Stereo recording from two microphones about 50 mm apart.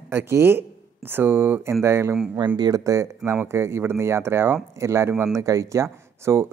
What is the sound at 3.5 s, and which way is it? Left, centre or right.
Speech, right.